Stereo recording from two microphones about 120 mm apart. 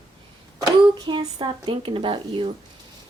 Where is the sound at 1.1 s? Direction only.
45° right (ahead or behind).